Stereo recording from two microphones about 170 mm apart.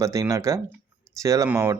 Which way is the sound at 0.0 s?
20° right (ahead or behind).